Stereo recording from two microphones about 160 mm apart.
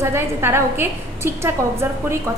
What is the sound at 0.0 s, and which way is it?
A woman's voice, 15° right (ahead or behind).